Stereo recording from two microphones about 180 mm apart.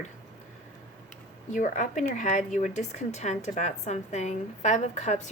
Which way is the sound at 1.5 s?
45° left (ahead or behind).